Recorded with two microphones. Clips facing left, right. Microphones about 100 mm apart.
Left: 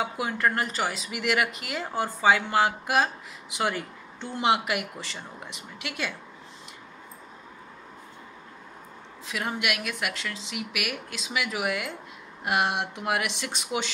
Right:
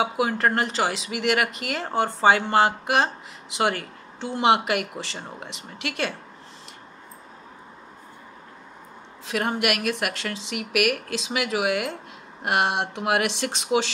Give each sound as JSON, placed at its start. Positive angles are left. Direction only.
{"t": 0.0, "sound": "speech", "side_deg": -65}
{"t": 0.8, "sound": "speech", "side_deg": -80}
{"t": 9.2, "sound": "speech", "side_deg": -60}